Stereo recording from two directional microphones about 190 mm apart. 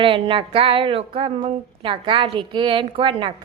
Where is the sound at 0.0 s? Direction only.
30° right (ahead or behind).